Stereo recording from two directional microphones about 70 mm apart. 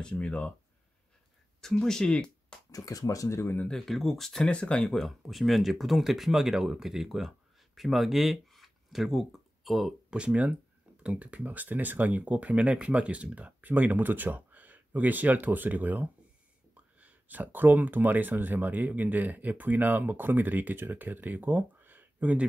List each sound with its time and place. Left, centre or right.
0.0 s speech: centre
1.6 s speech: centre
2.7 s speech: left
3.7 s speech: centre
10.1 s speech: centre